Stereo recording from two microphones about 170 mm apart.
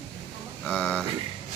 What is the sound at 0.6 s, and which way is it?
Speech, 5° left (ahead or behind).